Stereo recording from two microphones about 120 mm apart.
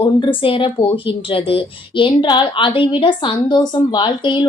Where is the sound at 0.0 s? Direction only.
45° left (ahead or behind).